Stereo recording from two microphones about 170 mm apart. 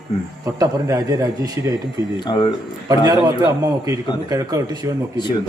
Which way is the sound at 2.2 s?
25° left (ahead or behind).